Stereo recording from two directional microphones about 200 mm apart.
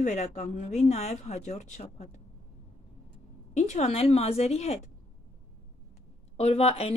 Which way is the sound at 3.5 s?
35° left (ahead or behind).